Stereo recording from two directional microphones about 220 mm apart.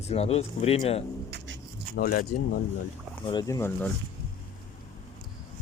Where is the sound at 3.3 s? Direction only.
15° left (ahead or behind).